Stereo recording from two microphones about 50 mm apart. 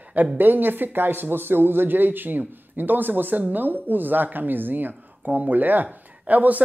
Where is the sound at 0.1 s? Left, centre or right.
Right.